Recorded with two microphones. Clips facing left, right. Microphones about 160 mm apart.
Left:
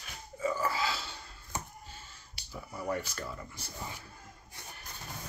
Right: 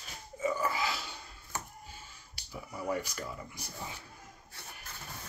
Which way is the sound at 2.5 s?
10° right (ahead or behind).